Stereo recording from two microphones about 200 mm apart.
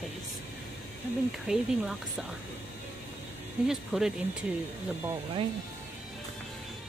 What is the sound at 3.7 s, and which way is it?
Speech, centre (ahead or behind).